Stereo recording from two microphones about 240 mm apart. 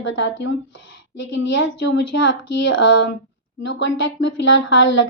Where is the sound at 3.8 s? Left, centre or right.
Left.